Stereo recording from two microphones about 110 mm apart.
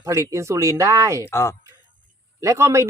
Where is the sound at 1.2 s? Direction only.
25° left (ahead or behind).